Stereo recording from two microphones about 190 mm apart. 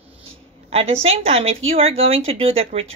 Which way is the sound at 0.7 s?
30° right (ahead or behind).